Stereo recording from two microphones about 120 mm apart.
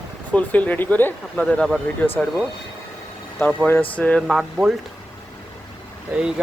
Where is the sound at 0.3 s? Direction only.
10° left (ahead or behind).